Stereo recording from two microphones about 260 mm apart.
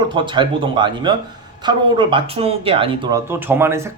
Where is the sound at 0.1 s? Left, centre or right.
Centre.